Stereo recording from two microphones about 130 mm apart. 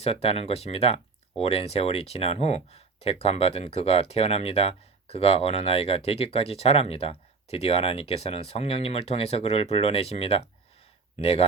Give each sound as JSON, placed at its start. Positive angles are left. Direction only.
{"t": 0.0, "sound": "speech", "side_deg": 50}